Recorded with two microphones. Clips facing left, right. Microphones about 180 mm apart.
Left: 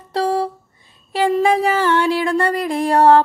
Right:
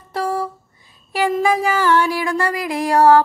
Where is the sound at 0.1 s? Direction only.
35° left (ahead or behind).